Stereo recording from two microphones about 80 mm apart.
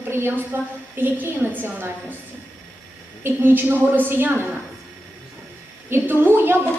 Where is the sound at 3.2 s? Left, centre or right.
Right.